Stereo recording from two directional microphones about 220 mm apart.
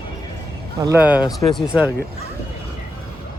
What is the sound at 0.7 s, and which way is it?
Speech, 15° right (ahead or behind).